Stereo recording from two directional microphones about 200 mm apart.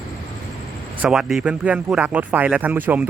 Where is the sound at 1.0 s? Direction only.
Centre (ahead or behind).